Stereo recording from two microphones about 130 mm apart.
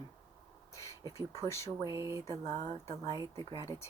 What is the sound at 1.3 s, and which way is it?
Speech, 20° left (ahead or behind).